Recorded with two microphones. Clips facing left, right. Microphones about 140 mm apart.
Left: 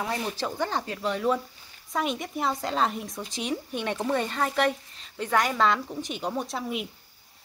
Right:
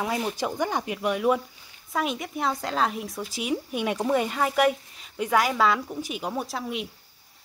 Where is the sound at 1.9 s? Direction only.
Centre (ahead or behind).